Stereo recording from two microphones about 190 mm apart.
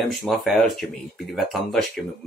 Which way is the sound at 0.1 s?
Centre (ahead or behind).